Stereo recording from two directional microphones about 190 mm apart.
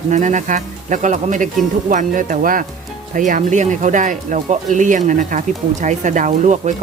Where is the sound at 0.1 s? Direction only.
40° right (ahead or behind).